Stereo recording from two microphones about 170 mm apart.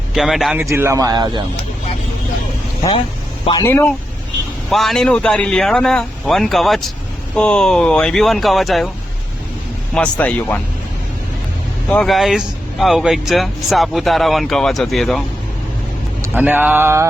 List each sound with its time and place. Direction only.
0.1 s speech: centre (ahead or behind)
0.6 s speech: 15° right (ahead or behind)
3.6 s speech: 15° left (ahead or behind)
4.7 s speech: centre (ahead or behind)
9.9 s speech: 5° left (ahead or behind)
11.9 s speech: 5° left (ahead or behind)
16.3 s speech: 10° right (ahead or behind)